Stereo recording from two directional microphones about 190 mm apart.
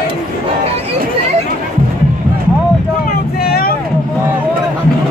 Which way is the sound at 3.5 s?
50° left (ahead or behind).